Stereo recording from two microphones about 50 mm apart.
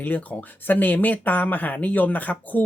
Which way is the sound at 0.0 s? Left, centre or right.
Left.